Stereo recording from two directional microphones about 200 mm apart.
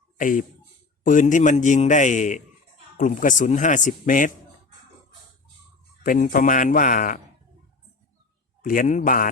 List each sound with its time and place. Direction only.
0.2 s a man's voice: 40° left (ahead or behind)
6.0 s a man's voice: 40° left (ahead or behind)
8.6 s a man's voice: 40° left (ahead or behind)